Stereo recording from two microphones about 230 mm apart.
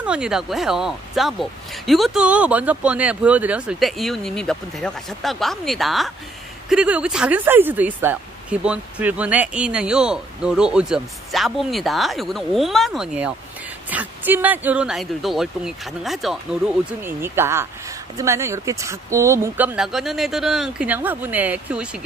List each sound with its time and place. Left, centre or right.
0.0 s speech: centre